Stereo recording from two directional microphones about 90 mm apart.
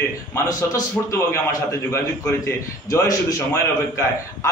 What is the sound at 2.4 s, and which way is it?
A man's voice, 35° left (ahead or behind).